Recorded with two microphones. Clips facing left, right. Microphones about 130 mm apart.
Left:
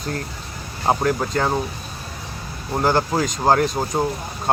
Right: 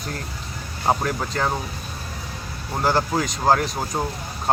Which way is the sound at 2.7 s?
15° left (ahead or behind).